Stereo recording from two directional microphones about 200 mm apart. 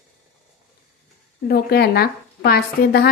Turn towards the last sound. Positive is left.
turn(degrees=50)  # may be behind; listen again after turning